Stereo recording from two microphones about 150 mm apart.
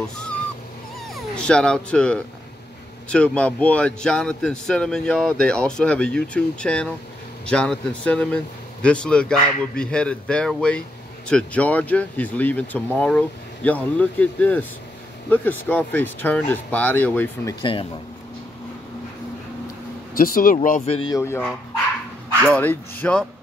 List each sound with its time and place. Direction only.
1.3 s speech: 5° left (ahead or behind)
17.6 s speech: 35° left (ahead or behind)
20.2 s speech: 70° left (ahead or behind)
20.6 s speech: 60° left (ahead or behind)
21.1 s speech: 15° left (ahead or behind)
22.5 s speech: 10° left (ahead or behind)